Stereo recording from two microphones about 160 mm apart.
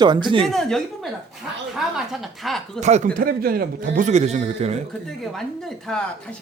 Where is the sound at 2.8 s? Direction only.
45° right (ahead or behind).